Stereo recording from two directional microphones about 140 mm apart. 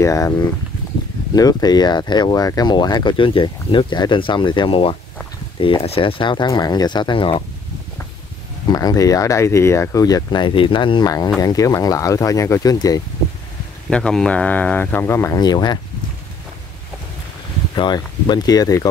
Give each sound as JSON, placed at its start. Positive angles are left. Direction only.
{"t": 0.0, "sound": "speech", "side_deg": 25}
{"t": 1.3, "sound": "speech", "side_deg": 25}
{"t": 8.6, "sound": "speech", "side_deg": 25}
{"t": 13.8, "sound": "speech", "side_deg": 5}
{"t": 15.4, "sound": "speech", "side_deg": 30}
{"t": 17.7, "sound": "speech", "side_deg": 30}